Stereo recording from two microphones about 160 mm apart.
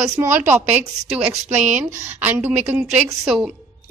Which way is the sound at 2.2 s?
10° right (ahead or behind).